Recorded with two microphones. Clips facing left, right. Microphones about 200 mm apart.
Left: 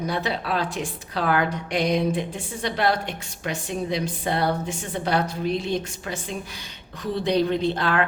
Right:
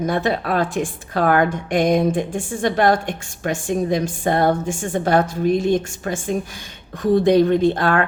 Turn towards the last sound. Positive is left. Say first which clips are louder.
# right 6 dB
turn(degrees=-50)  # may be behind; listen again after turning